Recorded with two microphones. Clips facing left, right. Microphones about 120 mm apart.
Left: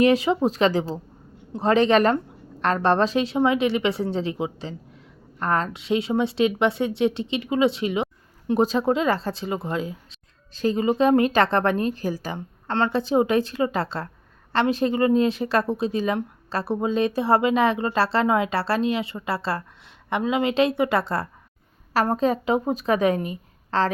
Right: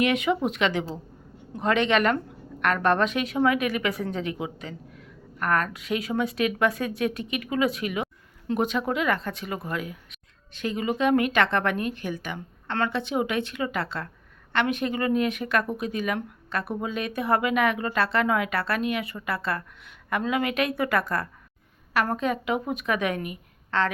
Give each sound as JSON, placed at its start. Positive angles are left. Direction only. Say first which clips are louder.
{"t": 0.0, "sound": "speech", "louder": "left 5 dB", "side_deg": 35}